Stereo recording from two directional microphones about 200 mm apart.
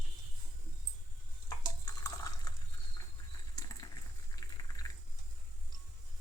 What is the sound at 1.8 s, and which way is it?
Water, 20° left (ahead or behind).